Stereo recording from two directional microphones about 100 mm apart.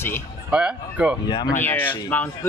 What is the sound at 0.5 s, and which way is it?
Speech, 10° right (ahead or behind).